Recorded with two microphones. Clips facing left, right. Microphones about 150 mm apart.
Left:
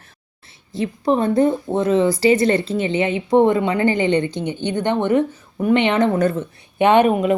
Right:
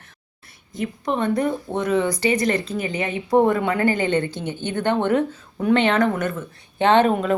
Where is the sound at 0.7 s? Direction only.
30° left (ahead or behind); by 6.1 s 15° left (ahead or behind).